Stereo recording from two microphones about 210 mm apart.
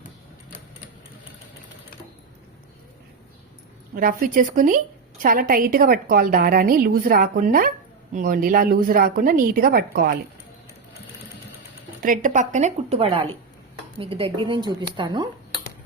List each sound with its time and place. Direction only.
3.9 s a woman's voice: 40° right (ahead or behind)
12.0 s a woman's voice: 40° right (ahead or behind); by 15.3 s 20° right (ahead or behind)